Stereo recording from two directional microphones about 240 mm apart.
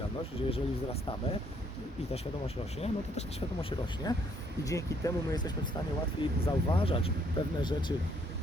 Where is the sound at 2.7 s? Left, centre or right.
Left.